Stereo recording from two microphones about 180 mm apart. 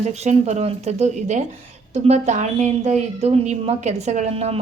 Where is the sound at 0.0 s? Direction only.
40° right (ahead or behind).